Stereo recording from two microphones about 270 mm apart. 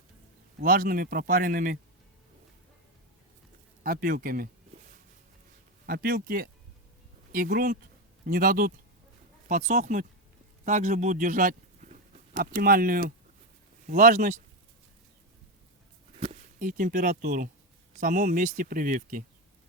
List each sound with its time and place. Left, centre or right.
0.6 s speech: right
3.8 s speech: right
5.8 s speech: right
16.2 s speech: right